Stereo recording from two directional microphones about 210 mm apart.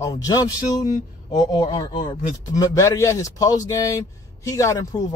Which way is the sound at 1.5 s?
20° left (ahead or behind).